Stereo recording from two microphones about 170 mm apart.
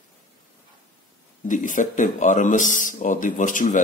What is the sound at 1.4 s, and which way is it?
Speech, 50° left (ahead or behind).